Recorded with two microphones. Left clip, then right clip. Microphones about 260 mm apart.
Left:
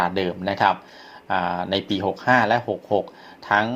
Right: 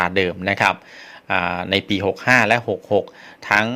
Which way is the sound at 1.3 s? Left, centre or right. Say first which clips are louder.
Right 3 dB; right.